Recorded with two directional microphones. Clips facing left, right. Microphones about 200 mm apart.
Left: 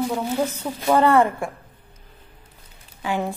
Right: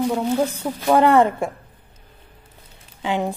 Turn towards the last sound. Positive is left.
turn(degrees=-20)  # may be behind; listen again after turning